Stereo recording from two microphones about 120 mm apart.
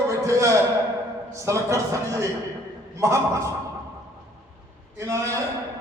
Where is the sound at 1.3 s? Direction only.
25° right (ahead or behind).